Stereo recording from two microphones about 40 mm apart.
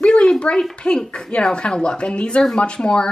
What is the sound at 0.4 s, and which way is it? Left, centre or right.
A woman's voice, left.